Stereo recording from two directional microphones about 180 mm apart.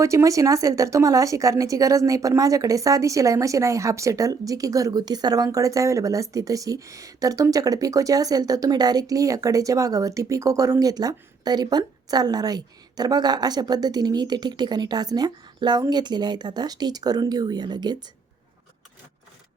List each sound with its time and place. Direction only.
0.0 s speech: 15° right (ahead or behind)